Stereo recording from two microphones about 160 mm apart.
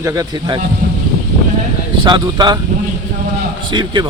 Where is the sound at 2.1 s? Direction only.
25° right (ahead or behind).